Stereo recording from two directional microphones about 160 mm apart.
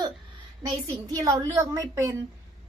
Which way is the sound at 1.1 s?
20° right (ahead or behind).